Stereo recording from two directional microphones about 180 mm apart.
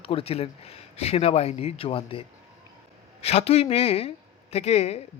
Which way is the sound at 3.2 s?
35° left (ahead or behind).